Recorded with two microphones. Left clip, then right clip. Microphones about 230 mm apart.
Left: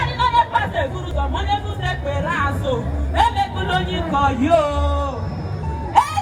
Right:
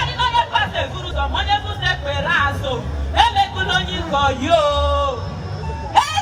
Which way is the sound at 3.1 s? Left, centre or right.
Centre.